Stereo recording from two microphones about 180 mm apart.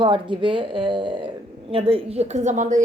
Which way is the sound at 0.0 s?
30° right (ahead or behind).